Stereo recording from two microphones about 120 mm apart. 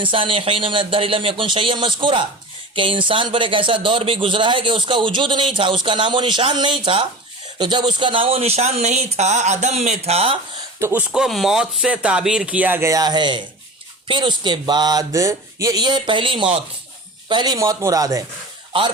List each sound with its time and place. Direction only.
0.0 s a man's voice: 45° right (ahead or behind)
10.8 s speech: 25° right (ahead or behind)
11.1 s speech: 5° right (ahead or behind); by 18.2 s 30° right (ahead or behind)
18.7 s a man's voice: 45° right (ahead or behind)